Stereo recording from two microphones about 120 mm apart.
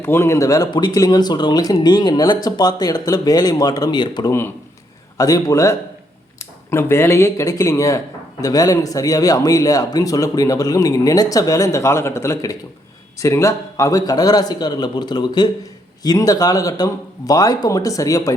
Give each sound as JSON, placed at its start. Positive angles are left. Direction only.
{"t": 0.0, "sound": "speech", "side_deg": 20}
{"t": 4.3, "sound": "speech", "side_deg": 20}
{"t": 5.1, "sound": "speech", "side_deg": 30}